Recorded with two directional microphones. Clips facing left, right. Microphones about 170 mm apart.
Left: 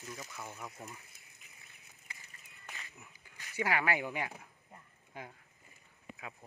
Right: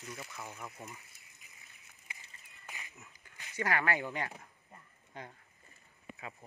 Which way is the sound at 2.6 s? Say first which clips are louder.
Even; 15° right (ahead or behind).